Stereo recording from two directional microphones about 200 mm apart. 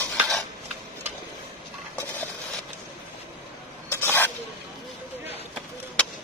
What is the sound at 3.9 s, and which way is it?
Filing, 10° left (ahead or behind).